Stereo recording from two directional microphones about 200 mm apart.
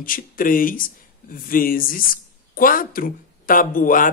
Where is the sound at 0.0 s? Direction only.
45° left (ahead or behind).